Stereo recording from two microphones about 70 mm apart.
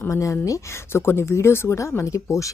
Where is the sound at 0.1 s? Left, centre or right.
Left.